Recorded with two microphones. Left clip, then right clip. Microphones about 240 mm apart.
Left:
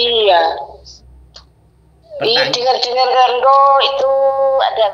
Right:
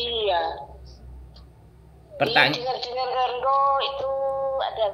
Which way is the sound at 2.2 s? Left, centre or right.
Centre.